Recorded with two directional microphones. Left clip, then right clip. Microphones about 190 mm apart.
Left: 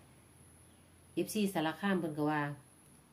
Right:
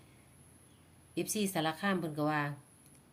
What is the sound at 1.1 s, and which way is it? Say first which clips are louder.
Speech: even; 25° right (ahead or behind).